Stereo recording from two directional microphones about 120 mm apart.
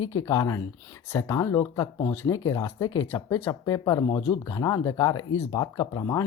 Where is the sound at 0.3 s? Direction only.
30° left (ahead or behind).